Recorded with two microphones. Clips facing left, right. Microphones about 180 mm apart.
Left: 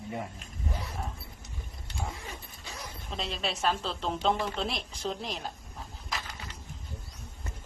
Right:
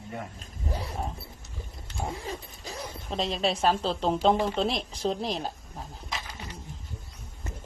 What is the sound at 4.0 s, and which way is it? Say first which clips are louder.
A woman's voice: right 5 dB; 35° right (ahead or behind).